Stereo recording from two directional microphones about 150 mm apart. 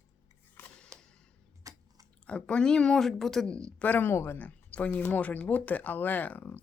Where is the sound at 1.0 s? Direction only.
5° left (ahead or behind).